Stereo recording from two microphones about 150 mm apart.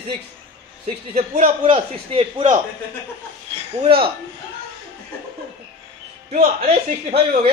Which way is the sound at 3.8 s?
35° right (ahead or behind).